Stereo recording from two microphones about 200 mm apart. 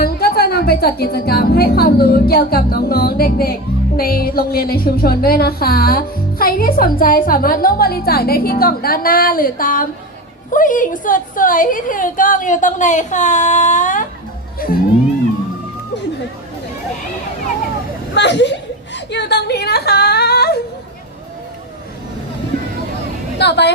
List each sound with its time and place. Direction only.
0.0 s a woman's voice: 50° left (ahead or behind)
18.1 s a sound: 60° left (ahead or behind)
23.4 s a woman's voice: 55° left (ahead or behind)